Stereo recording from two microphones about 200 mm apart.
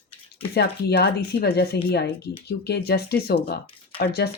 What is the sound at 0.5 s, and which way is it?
A woman's voice, 55° left (ahead or behind).